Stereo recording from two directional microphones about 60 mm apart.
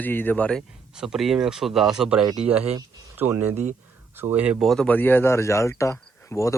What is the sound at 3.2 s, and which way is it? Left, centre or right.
Speech, right.